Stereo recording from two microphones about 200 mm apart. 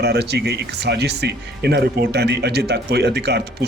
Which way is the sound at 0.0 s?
55° right (ahead or behind).